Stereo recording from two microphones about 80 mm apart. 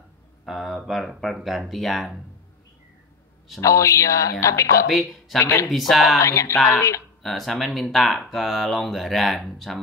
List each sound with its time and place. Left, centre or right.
0.5 s speech: centre
3.6 s a woman's voice: left
5.7 s speech: centre
6.1 s a woman's voice: left
7.2 s speech: centre